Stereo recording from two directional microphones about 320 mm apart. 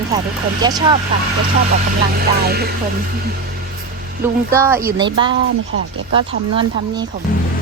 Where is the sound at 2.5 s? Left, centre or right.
Right.